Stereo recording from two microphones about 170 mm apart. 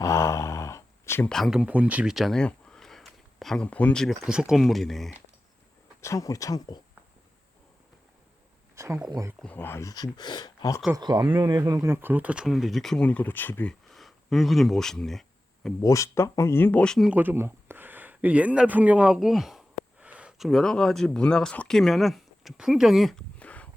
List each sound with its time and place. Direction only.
0.0 s a sound: 15° left (ahead or behind)
1.3 s speech: centre (ahead or behind)
6.0 s speech: 20° left (ahead or behind)
8.7 s a sound: 15° right (ahead or behind)
9.0 s speech: 20° right (ahead or behind)
9.4 s speech: 10° left (ahead or behind)
10.9 s speech: 25° right (ahead or behind); by 15.7 s centre (ahead or behind)
15.8 s speech: 20° left (ahead or behind)
17.1 s speech: 10° right (ahead or behind); by 23.6 s 10° left (ahead or behind)